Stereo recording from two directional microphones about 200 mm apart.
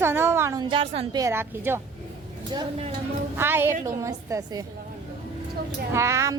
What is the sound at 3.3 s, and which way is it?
A woman's voice, 10° right (ahead or behind).